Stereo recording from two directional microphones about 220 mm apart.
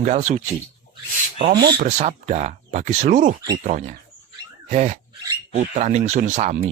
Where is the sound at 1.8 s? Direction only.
30° right (ahead or behind).